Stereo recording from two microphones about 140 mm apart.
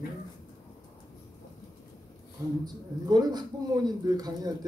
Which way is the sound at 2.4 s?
25° right (ahead or behind).